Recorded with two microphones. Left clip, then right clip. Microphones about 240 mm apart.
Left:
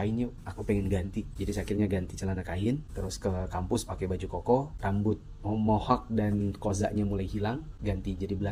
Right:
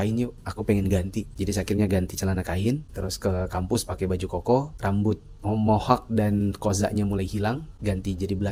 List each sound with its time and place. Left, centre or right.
0.0 s speech: right